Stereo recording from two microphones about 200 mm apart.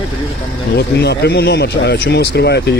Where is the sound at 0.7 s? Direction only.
55° left (ahead or behind).